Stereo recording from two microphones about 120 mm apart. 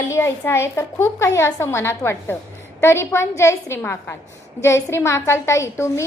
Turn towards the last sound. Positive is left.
turn(degrees=25)  # may be behind; listen again after turning